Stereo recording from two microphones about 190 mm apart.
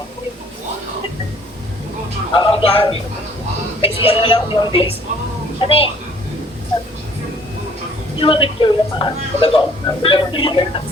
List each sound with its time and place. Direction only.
2.3 s speech: 25° left (ahead or behind)
8.2 s speech: 25° left (ahead or behind)